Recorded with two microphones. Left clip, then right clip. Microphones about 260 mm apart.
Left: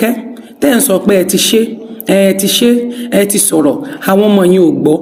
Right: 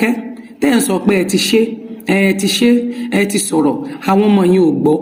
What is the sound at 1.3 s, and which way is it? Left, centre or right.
Speech, left.